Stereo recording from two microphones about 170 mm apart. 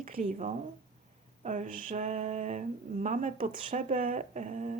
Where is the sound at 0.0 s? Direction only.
50° right (ahead or behind).